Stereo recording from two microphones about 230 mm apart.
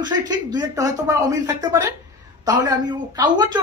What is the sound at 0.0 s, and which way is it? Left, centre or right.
A man's voice, centre.